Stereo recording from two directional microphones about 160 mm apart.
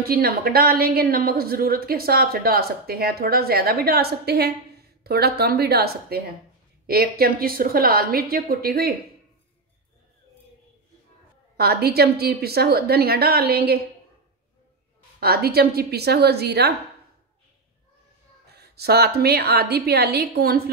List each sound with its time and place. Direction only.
0.0 s a woman's voice: 70° right (ahead or behind)
11.5 s a woman's voice: 75° right (ahead or behind)
15.1 s a woman's voice: 75° right (ahead or behind); by 16.7 s 90° right
18.5 s a woman's voice: 85° right